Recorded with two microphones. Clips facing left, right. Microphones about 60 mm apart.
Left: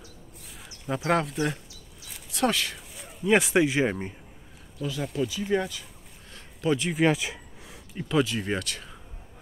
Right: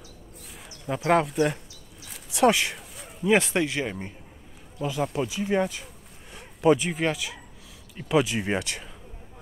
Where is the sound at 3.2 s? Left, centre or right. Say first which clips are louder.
Left 1 dB; centre.